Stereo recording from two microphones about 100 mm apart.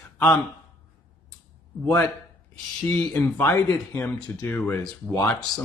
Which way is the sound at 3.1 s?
25° left (ahead or behind).